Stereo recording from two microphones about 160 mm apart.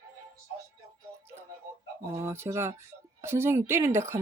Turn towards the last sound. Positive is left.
turn(degrees=-15)  # may be behind; listen again after turning